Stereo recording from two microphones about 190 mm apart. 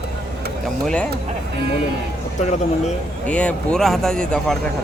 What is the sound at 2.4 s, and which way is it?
Speech, 35° left (ahead or behind).